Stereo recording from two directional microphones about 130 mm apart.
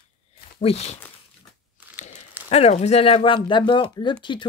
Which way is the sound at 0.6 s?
55° left (ahead or behind).